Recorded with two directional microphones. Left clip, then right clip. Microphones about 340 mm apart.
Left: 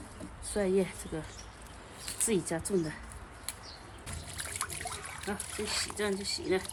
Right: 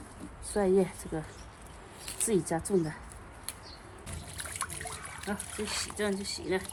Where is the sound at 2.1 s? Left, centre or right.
Centre.